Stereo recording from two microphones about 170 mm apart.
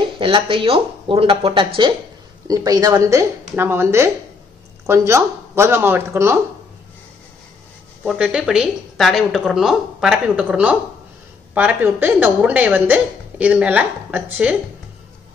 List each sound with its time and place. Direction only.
0.2 s a woman's voice: 30° right (ahead or behind); by 6.4 s 15° right (ahead or behind)
8.0 s a woman's voice: 5° right (ahead or behind)